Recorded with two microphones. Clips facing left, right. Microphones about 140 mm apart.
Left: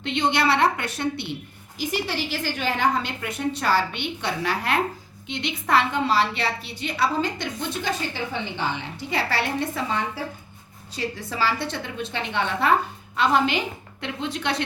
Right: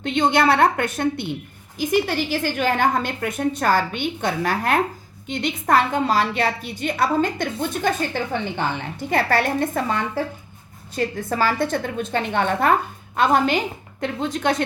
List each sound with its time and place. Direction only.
0.0 s a woman's voice: 50° right (ahead or behind)